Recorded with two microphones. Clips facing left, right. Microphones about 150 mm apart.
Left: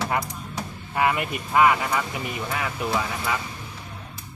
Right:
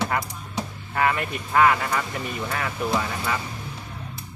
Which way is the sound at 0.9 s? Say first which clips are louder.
Even; 15° left (ahead or behind).